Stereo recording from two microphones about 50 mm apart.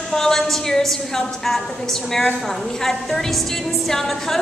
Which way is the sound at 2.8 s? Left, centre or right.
Centre.